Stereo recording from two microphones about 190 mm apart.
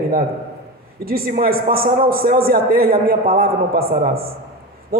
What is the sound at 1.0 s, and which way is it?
A man's voice, 50° right (ahead or behind).